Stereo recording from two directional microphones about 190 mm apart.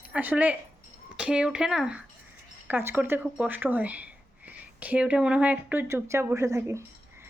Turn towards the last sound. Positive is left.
turn(degrees=-15)  # may be behind; listen again after turning